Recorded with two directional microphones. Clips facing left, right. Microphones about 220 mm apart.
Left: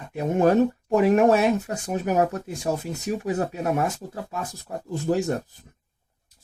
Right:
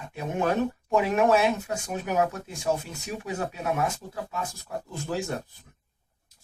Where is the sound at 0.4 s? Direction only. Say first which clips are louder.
Left 7 dB; 40° left (ahead or behind).